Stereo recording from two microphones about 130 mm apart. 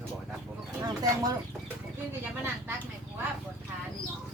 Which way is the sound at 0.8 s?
30° right (ahead or behind).